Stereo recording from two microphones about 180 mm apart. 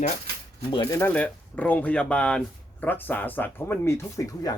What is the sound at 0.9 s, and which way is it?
Speech, 10° left (ahead or behind).